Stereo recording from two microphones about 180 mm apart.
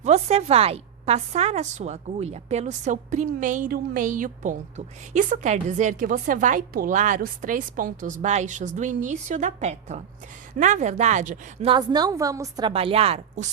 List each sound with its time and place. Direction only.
0.0 s a woman's voice: 35° right (ahead or behind)
11.7 s a woman's voice: 25° right (ahead or behind)
12.7 s a woman's voice: 35° right (ahead or behind)